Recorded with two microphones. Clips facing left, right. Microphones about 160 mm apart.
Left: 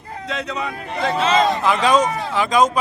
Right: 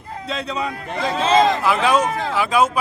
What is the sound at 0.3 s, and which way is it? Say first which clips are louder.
Speech: right 1 dB; 30° right (ahead or behind).